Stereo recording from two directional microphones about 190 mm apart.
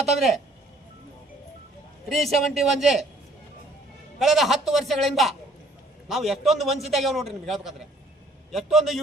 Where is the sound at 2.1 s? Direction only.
Centre (ahead or behind).